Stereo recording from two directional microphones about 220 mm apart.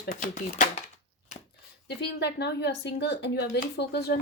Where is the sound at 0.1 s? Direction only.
35° left (ahead or behind).